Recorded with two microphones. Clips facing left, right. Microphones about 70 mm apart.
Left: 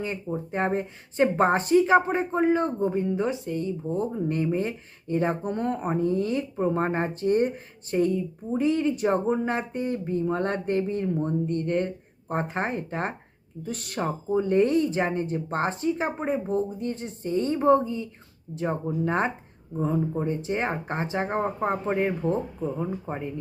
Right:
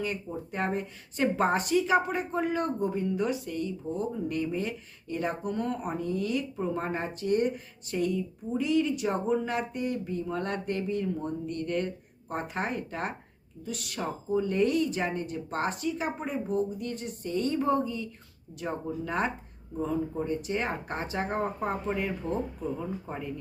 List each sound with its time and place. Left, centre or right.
0.0 s speech: left